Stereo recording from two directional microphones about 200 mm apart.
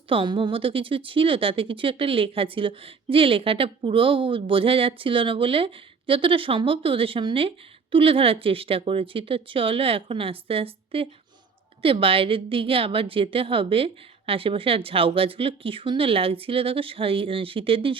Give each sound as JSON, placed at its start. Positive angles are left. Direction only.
{"t": 0.1, "sound": "speech", "side_deg": -25}